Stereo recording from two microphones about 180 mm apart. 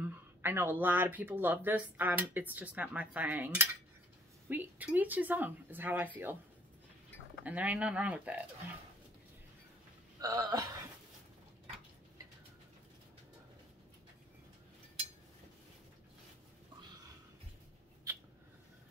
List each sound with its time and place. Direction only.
0.0 s speech: 10° right (ahead or behind)
7.4 s speech: 10° right (ahead or behind)
10.2 s speech: 20° right (ahead or behind)